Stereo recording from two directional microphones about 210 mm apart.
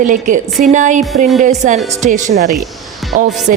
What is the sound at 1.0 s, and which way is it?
Music, centre (ahead or behind).